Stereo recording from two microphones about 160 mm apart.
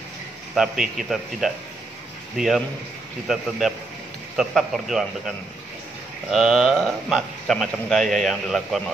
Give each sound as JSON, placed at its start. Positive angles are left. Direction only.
{"t": 0.6, "sound": "a man's voice", "side_deg": -5}
{"t": 6.3, "sound": "a man's voice", "side_deg": 0}